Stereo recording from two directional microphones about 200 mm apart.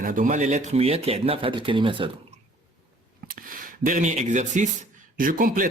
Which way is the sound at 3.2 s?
45° right (ahead or behind).